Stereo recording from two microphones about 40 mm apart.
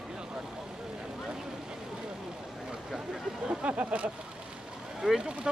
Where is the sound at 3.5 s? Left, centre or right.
Right.